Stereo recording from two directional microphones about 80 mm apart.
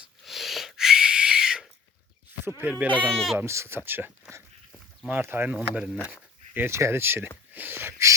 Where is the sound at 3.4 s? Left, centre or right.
Right.